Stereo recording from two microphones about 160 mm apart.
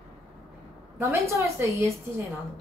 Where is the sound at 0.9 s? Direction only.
15° right (ahead or behind).